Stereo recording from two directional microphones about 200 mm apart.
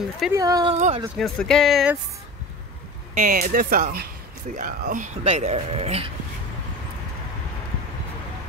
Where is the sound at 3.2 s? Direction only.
45° right (ahead or behind).